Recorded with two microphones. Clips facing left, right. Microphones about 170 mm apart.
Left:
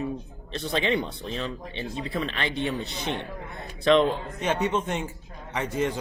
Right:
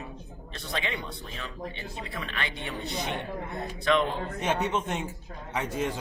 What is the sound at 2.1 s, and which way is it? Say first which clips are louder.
Speech: left 6 dB; 30° left (ahead or behind).